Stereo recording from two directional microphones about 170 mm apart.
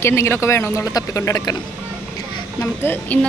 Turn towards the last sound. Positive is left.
turn(degrees=10)  # may be behind; listen again after turning